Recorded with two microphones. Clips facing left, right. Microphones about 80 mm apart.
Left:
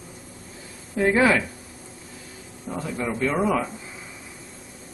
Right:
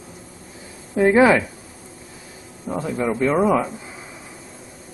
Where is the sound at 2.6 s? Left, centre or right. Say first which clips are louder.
Right 5 dB; centre.